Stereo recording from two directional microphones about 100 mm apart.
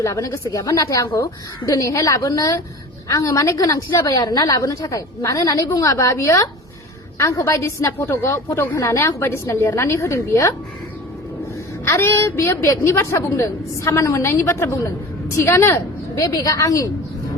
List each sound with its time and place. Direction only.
0.0 s a woman's voice: 30° left (ahead or behind)
11.9 s a woman's voice: 30° left (ahead or behind)